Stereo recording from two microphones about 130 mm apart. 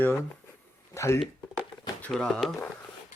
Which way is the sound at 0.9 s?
20° left (ahead or behind).